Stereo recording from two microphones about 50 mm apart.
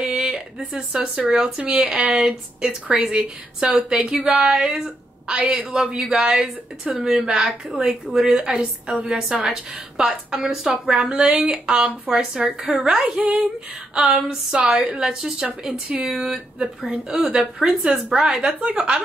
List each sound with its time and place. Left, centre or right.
0.6 s a woman's voice: centre
4.8 s a woman's voice: right
13.2 s speech: right
13.9 s a woman's voice: centre
15.7 s speech: right
16.1 s a woman's voice: centre
16.5 s a woman's voice: right